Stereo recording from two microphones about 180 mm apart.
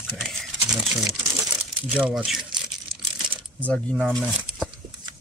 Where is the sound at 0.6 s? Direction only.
20° right (ahead or behind).